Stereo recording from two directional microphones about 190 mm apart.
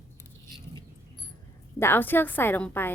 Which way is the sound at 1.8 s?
10° left (ahead or behind).